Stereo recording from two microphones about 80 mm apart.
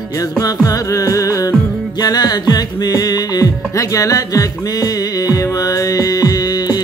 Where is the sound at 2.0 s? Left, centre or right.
Left.